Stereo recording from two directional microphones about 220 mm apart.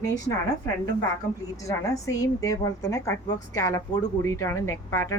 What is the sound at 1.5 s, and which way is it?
A woman's voice, 15° left (ahead or behind).